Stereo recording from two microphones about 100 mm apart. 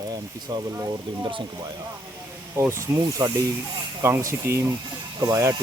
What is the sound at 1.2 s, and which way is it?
Speech, 55° right (ahead or behind).